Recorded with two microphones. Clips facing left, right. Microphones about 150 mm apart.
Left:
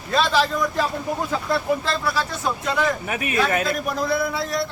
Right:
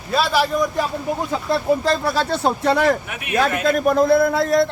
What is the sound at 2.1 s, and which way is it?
Speech, 60° right (ahead or behind).